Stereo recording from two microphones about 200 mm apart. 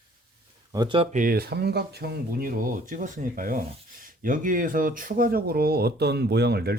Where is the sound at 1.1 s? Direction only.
45° right (ahead or behind).